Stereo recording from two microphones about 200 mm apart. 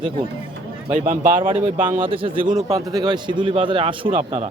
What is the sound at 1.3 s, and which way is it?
A man's voice, 25° right (ahead or behind).